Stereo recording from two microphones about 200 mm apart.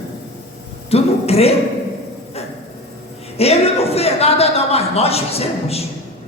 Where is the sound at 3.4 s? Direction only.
30° left (ahead or behind).